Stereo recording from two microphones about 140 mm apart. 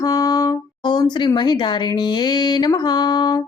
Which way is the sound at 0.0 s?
25° left (ahead or behind).